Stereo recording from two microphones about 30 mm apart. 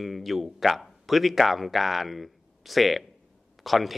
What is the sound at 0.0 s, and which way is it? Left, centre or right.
Speech, centre.